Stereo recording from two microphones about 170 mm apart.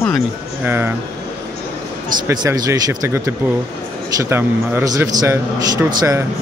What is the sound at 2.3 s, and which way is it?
Speech, 20° right (ahead or behind).